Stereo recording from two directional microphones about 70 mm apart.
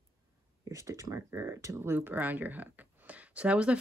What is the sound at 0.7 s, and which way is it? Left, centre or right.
Speech, right.